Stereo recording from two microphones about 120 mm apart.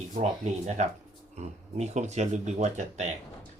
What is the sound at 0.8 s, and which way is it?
Speech, 65° right (ahead or behind).